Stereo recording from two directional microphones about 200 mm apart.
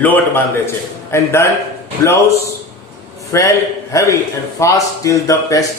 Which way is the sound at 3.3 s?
15° left (ahead or behind).